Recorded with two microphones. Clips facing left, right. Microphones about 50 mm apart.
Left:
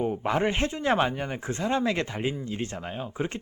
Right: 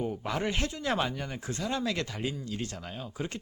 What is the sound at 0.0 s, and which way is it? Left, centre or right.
Speech, left.